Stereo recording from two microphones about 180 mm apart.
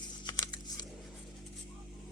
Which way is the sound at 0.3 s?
25° left (ahead or behind).